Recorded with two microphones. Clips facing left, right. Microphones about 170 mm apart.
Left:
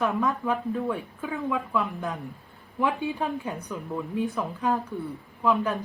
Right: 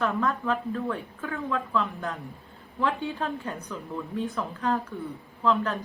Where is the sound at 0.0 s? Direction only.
15° left (ahead or behind).